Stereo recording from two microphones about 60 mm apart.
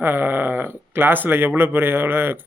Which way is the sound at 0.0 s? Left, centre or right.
Right.